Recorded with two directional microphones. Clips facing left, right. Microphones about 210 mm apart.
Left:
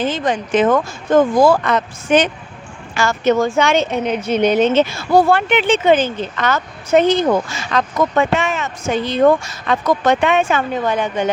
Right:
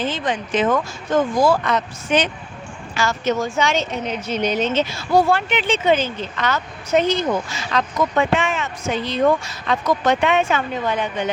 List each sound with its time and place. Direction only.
0.0 s a woman's voice: 45° left (ahead or behind)